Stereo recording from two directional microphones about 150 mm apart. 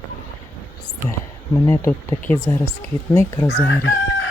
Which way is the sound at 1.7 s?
20° left (ahead or behind).